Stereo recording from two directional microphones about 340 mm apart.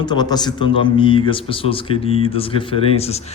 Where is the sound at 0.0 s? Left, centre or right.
Centre.